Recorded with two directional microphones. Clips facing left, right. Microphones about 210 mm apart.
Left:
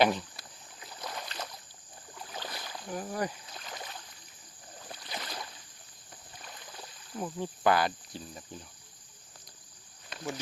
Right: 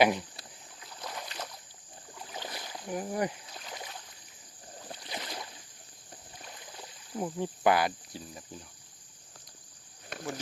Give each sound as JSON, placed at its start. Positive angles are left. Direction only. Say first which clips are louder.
{"t": 0.0, "sound": "speech", "louder": "right 1 dB", "side_deg": -10}
{"t": 1.0, "sound": "boat", "louder": "even", "side_deg": -5}
{"t": 6.7, "sound": "speech", "louder": "right 3 dB", "side_deg": -20}